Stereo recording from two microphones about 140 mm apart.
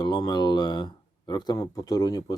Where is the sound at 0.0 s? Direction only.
30° left (ahead or behind).